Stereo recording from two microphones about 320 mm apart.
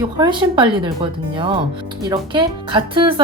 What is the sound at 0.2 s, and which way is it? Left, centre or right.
Speech, centre.